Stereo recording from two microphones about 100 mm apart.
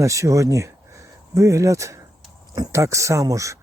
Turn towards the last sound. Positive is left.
turn(degrees=-30)  # may be behind; listen again after turning